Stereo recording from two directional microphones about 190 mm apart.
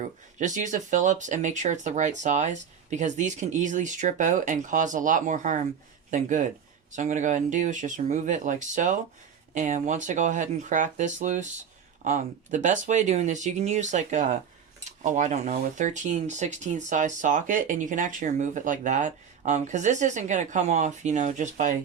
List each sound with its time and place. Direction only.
0.0 s speech: 40° right (ahead or behind)